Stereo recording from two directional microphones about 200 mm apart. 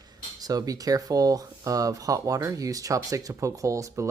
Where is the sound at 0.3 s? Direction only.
20° right (ahead or behind).